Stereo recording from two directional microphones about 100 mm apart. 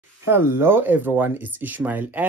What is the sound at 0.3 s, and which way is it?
Speech, 25° right (ahead or behind).